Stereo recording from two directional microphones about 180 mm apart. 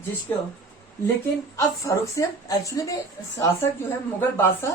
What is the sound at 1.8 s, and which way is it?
Speech, 15° left (ahead or behind).